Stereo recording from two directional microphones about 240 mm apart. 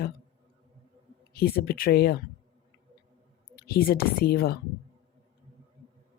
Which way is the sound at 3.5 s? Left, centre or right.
Left.